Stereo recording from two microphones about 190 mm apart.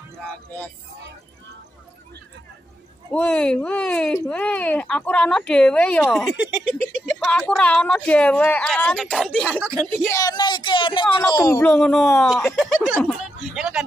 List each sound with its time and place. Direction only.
3.1 s speech: 5° left (ahead or behind)
10.1 s speech: 20° left (ahead or behind)
11.6 s speech: 5° left (ahead or behind)